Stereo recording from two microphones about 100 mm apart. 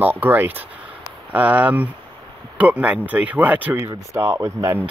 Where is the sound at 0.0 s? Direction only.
20° right (ahead or behind).